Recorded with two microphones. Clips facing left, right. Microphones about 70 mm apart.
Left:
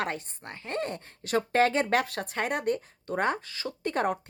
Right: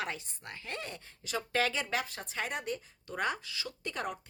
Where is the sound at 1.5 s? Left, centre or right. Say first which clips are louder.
Left 8 dB; left.